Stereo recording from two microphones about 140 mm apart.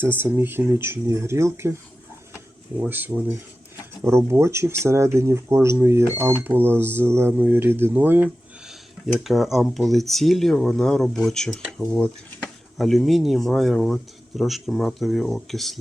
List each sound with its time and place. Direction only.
0.0 s speech: 15° right (ahead or behind)
2.7 s speech: 15° right (ahead or behind)
9.1 s speech: centre (ahead or behind)